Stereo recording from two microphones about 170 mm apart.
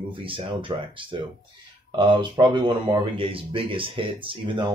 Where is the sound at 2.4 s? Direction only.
25° right (ahead or behind).